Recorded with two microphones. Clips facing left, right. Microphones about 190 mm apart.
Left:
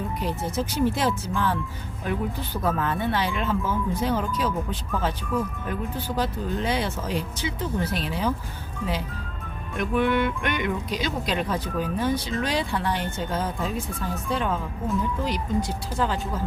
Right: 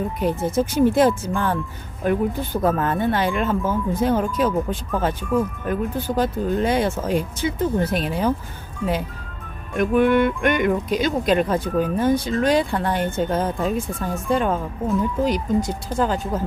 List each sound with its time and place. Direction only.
0.2 s speech: 50° right (ahead or behind)
9.7 s speech: 50° right (ahead or behind)